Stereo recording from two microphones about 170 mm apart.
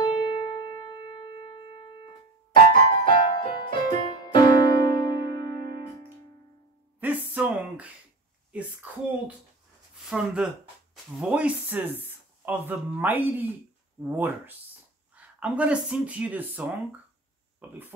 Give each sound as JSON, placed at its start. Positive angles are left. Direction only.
{"t": 0.0, "sound": "music", "side_deg": 25}
{"t": 7.0, "sound": "a sound", "side_deg": -10}
{"t": 8.8, "sound": "speech", "side_deg": -10}
{"t": 10.0, "sound": "speech", "side_deg": -5}